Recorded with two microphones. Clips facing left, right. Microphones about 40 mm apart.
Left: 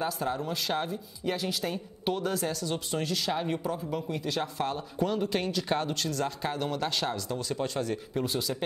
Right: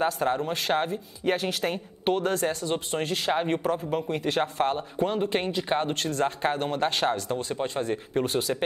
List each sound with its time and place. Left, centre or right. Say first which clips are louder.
0.0 s speech: right 5 dB; right